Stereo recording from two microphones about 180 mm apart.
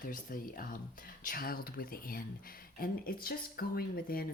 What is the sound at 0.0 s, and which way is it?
Speech, 50° left (ahead or behind).